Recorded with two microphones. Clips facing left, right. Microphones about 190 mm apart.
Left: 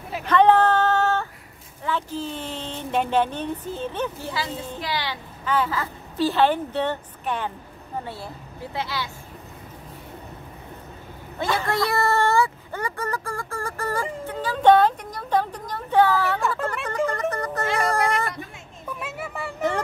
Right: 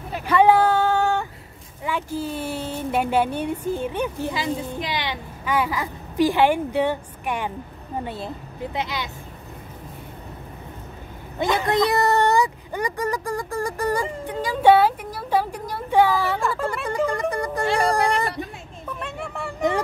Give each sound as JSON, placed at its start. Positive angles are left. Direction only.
{"t": 0.3, "sound": "female singing", "side_deg": -10}
{"t": 1.9, "sound": "a woman's voice", "side_deg": -10}
{"t": 11.3, "sound": "speech", "side_deg": -15}
{"t": 16.3, "sound": "speech", "side_deg": 0}
{"t": 16.6, "sound": "music", "side_deg": -10}
{"t": 17.6, "sound": "speech", "side_deg": -35}
{"t": 18.9, "sound": "vehicle", "side_deg": 5}